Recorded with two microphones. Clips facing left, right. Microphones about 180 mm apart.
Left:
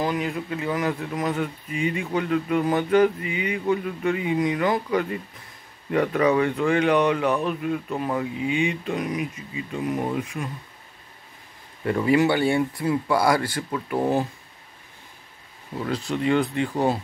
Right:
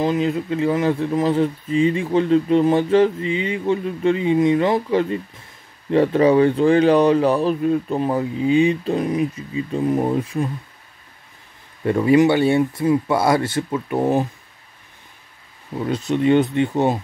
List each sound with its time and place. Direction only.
0.0 s speech: 25° right (ahead or behind)
11.8 s speech: 25° right (ahead or behind)
15.8 s speech: 20° right (ahead or behind)